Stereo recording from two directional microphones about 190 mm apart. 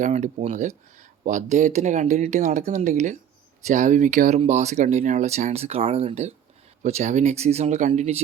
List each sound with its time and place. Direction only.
0.0 s speech: 35° right (ahead or behind)